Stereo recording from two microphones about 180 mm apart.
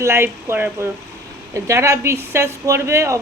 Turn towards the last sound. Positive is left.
turn(degrees=-15)  # may be behind; listen again after turning